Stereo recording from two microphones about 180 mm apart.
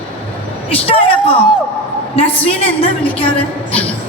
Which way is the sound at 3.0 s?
10° left (ahead or behind).